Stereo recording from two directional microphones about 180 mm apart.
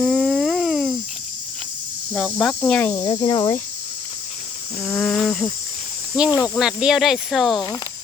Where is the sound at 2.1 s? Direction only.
5° left (ahead or behind); by 3.5 s 20° left (ahead or behind).